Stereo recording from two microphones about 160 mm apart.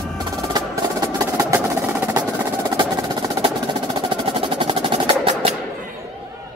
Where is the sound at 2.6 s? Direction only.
25° right (ahead or behind).